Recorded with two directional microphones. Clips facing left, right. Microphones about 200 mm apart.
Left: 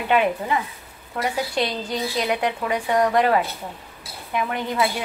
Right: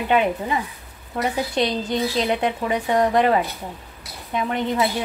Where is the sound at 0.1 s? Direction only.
20° right (ahead or behind).